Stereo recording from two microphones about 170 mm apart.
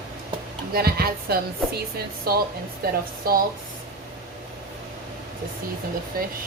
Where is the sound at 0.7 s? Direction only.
65° right (ahead or behind).